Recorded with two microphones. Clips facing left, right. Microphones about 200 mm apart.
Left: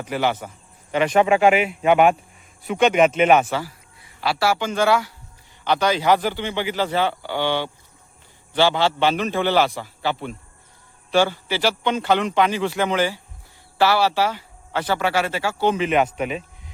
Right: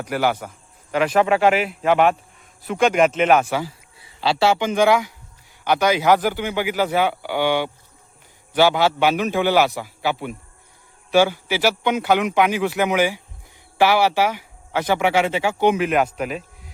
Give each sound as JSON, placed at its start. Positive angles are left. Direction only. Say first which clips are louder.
{"t": 0.1, "sound": "a man's voice", "louder": "right 1 dB", "side_deg": -10}
{"t": 4.2, "sound": "speech", "louder": "right 3 dB", "side_deg": -25}